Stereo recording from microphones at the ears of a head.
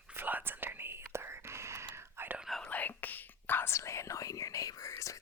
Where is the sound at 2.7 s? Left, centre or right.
Left.